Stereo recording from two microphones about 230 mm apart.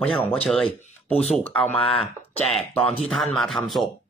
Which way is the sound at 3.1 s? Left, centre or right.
Centre.